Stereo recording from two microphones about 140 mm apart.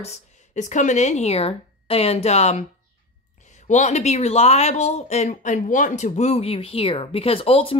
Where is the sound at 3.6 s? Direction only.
55° left (ahead or behind).